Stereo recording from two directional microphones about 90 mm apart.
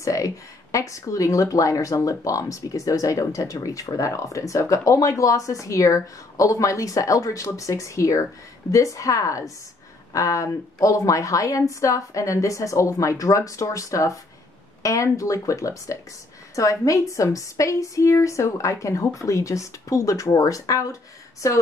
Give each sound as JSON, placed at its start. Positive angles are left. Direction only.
{"t": 0.0, "sound": "speech", "side_deg": 35}